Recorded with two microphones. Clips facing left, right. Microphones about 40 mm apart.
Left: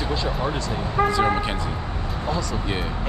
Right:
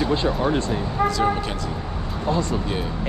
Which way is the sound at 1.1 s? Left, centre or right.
Left.